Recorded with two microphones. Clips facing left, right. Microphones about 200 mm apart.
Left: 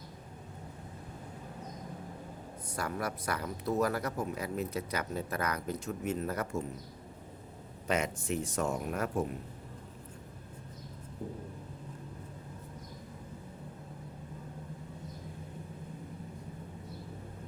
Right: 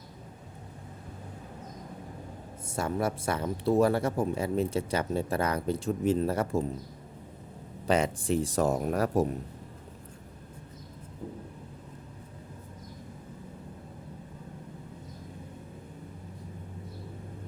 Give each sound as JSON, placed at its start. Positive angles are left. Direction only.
{"t": 2.6, "sound": "speech", "side_deg": -25}
{"t": 7.9, "sound": "speech", "side_deg": -30}